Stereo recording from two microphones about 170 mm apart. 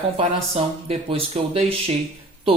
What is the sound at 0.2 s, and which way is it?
Speech, 35° right (ahead or behind).